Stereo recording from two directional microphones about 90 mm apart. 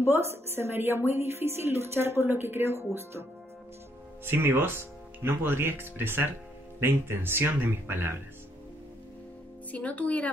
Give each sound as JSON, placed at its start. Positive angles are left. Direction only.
{"t": 0.0, "sound": "a woman's voice", "side_deg": -30}
{"t": 9.7, "sound": "speech", "side_deg": 15}